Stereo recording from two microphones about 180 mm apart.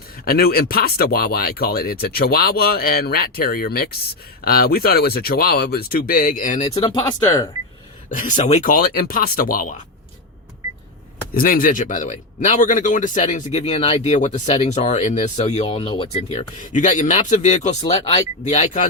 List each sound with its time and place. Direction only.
0.3 s speech: 60° left (ahead or behind); by 6.9 s 35° left (ahead or behind)
8.4 s speech: 40° left (ahead or behind)
8.7 s speech: 55° left (ahead or behind)
11.3 s speech: 55° left (ahead or behind)